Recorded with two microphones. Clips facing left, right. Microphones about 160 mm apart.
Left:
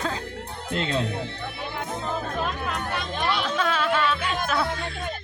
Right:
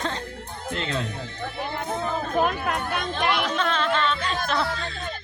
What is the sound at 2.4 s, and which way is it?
Chatter, 60° right (ahead or behind).